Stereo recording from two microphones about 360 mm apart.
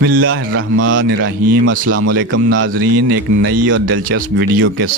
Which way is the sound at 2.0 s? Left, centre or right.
Right.